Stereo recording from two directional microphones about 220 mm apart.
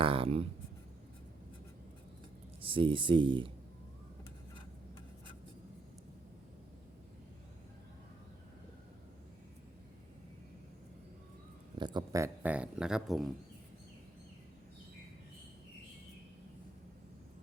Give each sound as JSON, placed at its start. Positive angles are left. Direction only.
{"t": 0.0, "sound": "speech", "side_deg": -25}
{"t": 2.6, "sound": "speech", "side_deg": -25}
{"t": 11.8, "sound": "speech", "side_deg": -20}